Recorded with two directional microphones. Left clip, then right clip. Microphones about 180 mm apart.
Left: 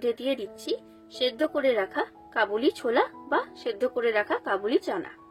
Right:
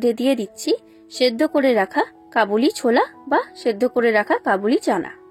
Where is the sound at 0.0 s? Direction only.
45° right (ahead or behind).